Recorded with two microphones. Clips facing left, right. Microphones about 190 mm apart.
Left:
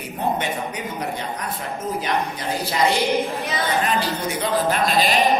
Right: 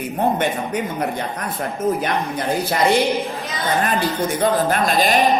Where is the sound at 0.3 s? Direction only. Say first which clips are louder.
Right 5 dB; 55° right (ahead or behind).